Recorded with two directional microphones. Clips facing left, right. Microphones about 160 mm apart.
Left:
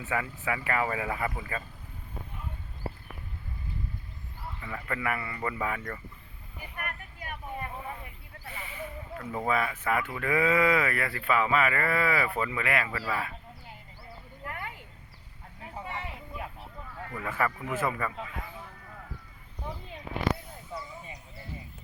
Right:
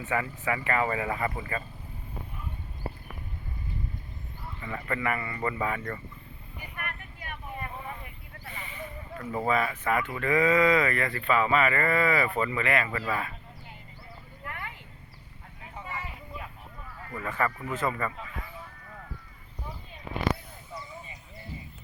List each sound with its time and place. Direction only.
0.0 s speech: 5° left (ahead or behind)
4.7 s speech: 5° left (ahead or behind)
6.7 s vehicle: 40° left (ahead or behind)
8.5 s speech: 5° left (ahead or behind)
17.1 s speech: 5° left (ahead or behind)